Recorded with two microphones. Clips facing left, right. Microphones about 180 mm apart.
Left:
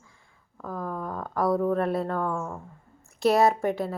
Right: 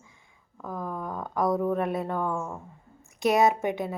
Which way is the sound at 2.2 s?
5° right (ahead or behind).